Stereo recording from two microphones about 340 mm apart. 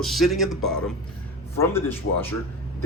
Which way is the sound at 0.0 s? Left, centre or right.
Centre.